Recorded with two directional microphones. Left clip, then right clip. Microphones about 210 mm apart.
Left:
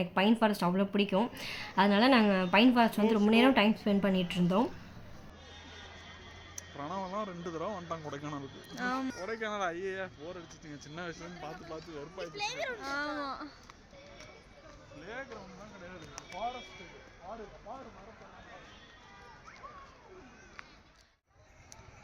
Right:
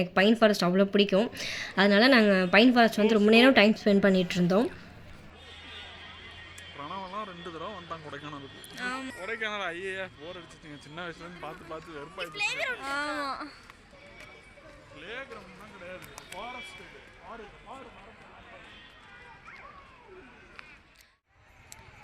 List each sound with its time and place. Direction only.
0.0 s speech: 10° right (ahead or behind)
6.7 s a sound: 55° left (ahead or behind)
8.7 s music: 35° left (ahead or behind)
9.2 s speech: 35° left (ahead or behind); by 12.2 s 10° left (ahead or behind)
12.2 s speech: 25° left (ahead or behind)
12.8 s speech: centre (ahead or behind)
15.0 s speech: 45° left (ahead or behind)